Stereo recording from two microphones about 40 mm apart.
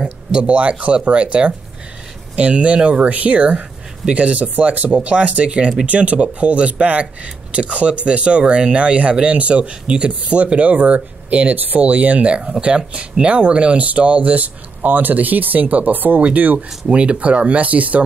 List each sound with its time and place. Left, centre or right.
0.3 s speech: right
11.5 s speech: right
11.8 s speech: right
16.9 s speech: right